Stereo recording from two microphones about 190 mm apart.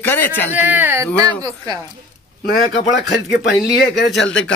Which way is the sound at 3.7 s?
60° left (ahead or behind).